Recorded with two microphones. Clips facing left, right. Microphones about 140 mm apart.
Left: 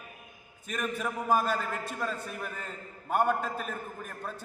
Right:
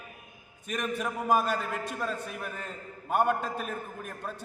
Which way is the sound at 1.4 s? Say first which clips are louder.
Even; centre (ahead or behind).